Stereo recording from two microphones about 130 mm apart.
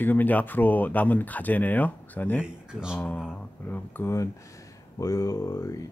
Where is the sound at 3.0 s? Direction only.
10° left (ahead or behind).